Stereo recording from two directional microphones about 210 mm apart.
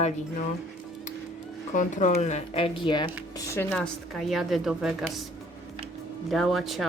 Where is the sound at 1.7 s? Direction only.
35° left (ahead or behind); by 3.7 s 10° left (ahead or behind).